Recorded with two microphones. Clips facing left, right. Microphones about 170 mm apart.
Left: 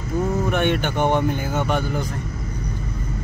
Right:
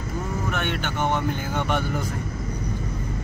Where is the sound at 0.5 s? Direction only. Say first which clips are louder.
Left 7 dB; 15° left (ahead or behind); by 2.0 s centre (ahead or behind).